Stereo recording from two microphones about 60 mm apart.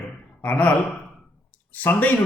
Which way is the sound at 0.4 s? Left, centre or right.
Left.